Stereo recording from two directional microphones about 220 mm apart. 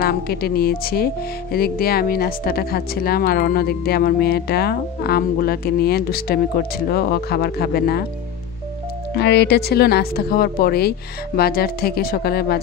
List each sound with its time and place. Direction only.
0.0 s speech: 45° left (ahead or behind)
9.1 s speech: 50° left (ahead or behind)